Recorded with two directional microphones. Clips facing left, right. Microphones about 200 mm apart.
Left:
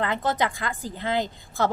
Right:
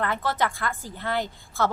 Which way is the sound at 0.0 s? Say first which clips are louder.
Left 1 dB; 20° left (ahead or behind).